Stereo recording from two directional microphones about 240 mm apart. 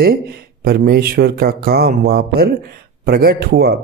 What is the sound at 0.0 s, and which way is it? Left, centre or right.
Speech, right.